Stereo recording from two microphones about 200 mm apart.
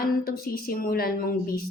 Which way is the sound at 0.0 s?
50° left (ahead or behind).